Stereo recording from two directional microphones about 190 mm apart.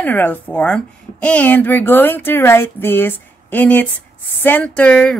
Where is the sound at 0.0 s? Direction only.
10° left (ahead or behind).